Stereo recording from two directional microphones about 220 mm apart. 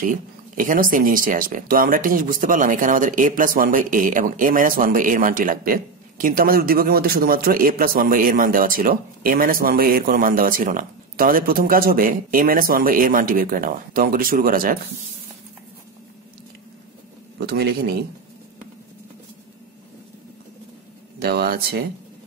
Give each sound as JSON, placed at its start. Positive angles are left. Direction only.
{"t": 0.0, "sound": "speech", "side_deg": -35}
{"t": 17.4, "sound": "a man's voice", "side_deg": -50}
{"t": 21.2, "sound": "a man's voice", "side_deg": -45}